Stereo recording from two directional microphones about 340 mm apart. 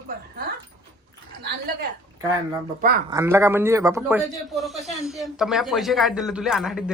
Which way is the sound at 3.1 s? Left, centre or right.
Centre.